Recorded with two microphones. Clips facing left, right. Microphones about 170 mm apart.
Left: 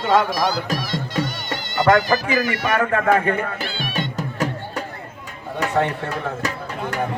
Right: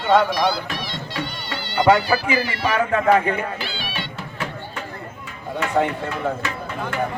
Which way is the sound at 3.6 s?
50° left (ahead or behind).